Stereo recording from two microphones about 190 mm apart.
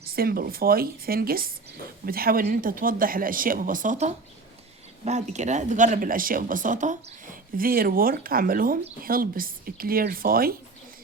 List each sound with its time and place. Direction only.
0.2 s speech: 50° right (ahead or behind)